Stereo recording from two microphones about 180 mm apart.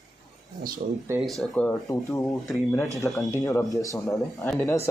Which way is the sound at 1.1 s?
Centre (ahead or behind).